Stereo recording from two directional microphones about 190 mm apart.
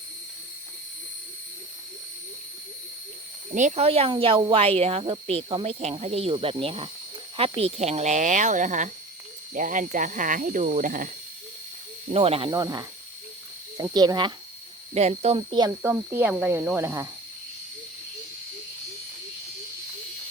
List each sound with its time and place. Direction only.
3.5 s speech: 40° right (ahead or behind)
12.1 s speech: 30° right (ahead or behind)
12.5 s speech: 20° right (ahead or behind)
13.9 s speech: 20° right (ahead or behind)
14.9 s speech: 35° right (ahead or behind); by 17.1 s 15° right (ahead or behind)